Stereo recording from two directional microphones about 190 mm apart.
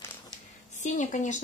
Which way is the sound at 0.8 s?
40° left (ahead or behind).